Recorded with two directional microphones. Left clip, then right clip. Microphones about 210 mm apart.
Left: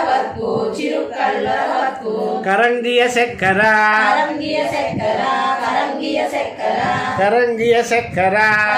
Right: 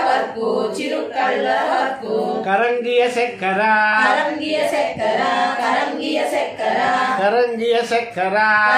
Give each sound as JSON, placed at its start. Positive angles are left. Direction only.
{"t": 2.5, "sound": "speech", "side_deg": 25}
{"t": 7.2, "sound": "speech", "side_deg": 20}